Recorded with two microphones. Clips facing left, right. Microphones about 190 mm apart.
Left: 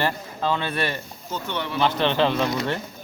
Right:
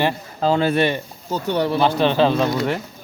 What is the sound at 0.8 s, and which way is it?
Speech, 20° right (ahead or behind).